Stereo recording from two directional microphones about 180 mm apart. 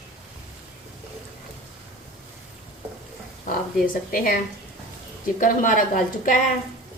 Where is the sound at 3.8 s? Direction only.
50° left (ahead or behind).